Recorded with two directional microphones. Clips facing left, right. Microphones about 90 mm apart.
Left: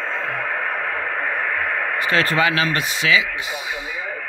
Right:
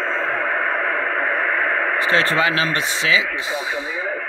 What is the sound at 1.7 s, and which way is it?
Speech, 30° right (ahead or behind).